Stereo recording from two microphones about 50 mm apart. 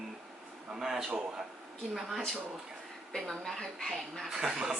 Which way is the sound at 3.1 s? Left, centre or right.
Centre.